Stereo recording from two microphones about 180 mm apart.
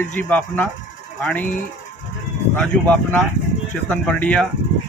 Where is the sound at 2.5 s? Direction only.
10° left (ahead or behind).